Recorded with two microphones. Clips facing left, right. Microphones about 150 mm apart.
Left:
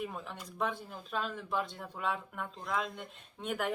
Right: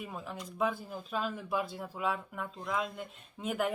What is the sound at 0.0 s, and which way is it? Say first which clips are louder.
Speech: left 1 dB; centre (ahead or behind).